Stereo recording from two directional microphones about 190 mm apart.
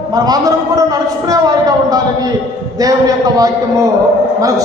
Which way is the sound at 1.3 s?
20° right (ahead or behind).